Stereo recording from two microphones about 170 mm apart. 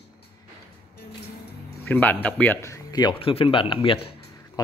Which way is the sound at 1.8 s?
10° left (ahead or behind).